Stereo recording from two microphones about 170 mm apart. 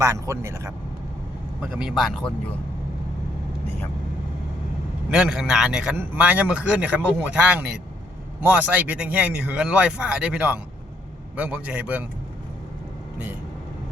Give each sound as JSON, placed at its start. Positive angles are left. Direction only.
{"t": 0.0, "sound": "a man's voice", "side_deg": -15}
{"t": 1.6, "sound": "speech", "side_deg": -5}
{"t": 5.1, "sound": "a man's voice", "side_deg": -5}